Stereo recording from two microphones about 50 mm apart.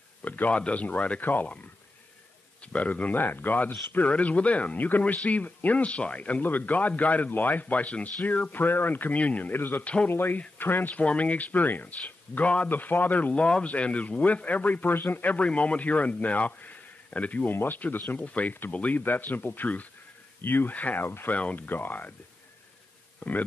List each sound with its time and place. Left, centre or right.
0.2 s a man's voice: left
2.6 s a man's voice: left
9.5 s a man's voice: left
11.0 s a man's voice: left
12.6 s a man's voice: left
13.3 s a man's voice: left
15.4 s speech: left
17.5 s a man's voice: left
21.0 s a man's voice: left
21.3 s a man's voice: left
23.2 s speech: left